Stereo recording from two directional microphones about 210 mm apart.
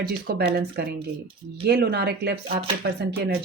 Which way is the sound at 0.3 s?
45° right (ahead or behind).